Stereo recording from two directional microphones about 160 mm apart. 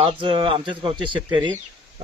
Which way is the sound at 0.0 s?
30° right (ahead or behind).